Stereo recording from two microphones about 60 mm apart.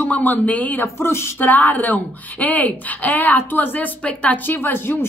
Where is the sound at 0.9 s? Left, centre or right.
Left.